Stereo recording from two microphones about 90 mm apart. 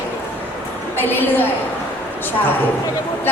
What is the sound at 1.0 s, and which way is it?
Speech, 20° left (ahead or behind).